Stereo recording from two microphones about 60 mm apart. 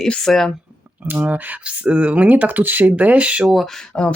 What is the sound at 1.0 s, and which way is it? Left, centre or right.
Speech, right.